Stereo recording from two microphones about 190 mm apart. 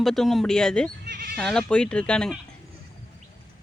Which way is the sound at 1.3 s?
Centre (ahead or behind).